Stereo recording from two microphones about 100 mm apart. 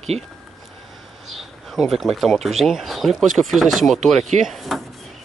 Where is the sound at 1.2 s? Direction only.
Centre (ahead or behind).